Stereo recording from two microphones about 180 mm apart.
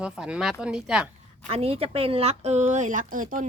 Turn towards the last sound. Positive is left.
turn(degrees=-45)  # may be behind; listen again after turning